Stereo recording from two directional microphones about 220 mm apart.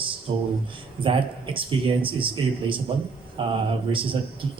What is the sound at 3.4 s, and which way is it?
Speech, 20° right (ahead or behind).